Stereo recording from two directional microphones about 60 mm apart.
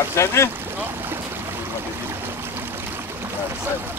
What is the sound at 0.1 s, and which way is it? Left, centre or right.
Speech, left.